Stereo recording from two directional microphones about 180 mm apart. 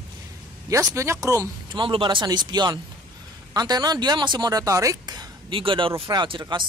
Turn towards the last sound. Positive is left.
turn(degrees=-25)  # may be behind; listen again after turning